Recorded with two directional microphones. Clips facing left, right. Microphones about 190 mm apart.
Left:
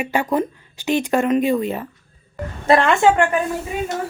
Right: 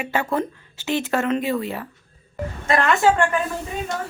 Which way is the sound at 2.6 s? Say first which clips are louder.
Left 4 dB; 30° left (ahead or behind).